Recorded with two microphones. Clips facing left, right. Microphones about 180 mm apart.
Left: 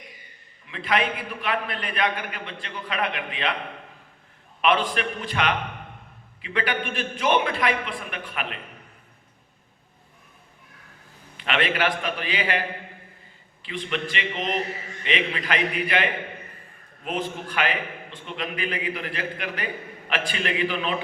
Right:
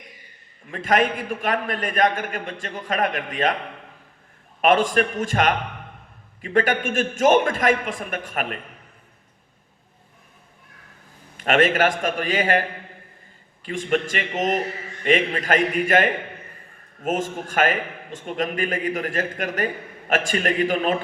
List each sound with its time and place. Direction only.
0.7 s a man's voice: 45° right (ahead or behind)
4.6 s a man's voice: 45° right (ahead or behind)
11.3 s a man's voice: 45° right (ahead or behind)